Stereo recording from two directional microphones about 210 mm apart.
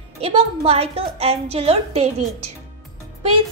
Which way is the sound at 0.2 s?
30° right (ahead or behind).